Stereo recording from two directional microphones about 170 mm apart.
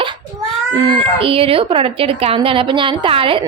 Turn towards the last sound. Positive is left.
turn(degrees=-30)  # may be behind; listen again after turning